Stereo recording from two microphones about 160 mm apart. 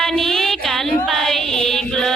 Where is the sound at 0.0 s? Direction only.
Centre (ahead or behind).